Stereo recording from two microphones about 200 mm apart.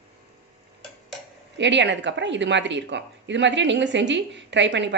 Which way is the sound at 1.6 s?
60° right (ahead or behind).